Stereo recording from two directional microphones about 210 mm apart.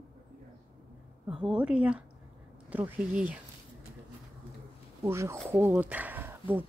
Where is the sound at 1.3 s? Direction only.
5° right (ahead or behind).